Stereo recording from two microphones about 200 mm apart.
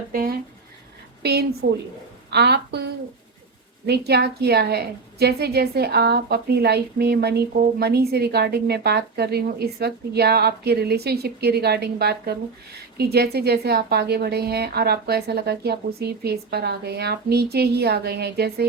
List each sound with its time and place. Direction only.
0.1 s writing: 45° right (ahead or behind)
1.2 s a woman's voice: 55° right (ahead or behind)